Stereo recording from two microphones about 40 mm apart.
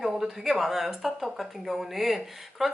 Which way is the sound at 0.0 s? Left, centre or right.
Centre.